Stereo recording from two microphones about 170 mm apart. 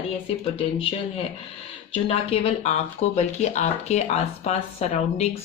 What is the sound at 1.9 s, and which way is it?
Speech, 35° left (ahead or behind).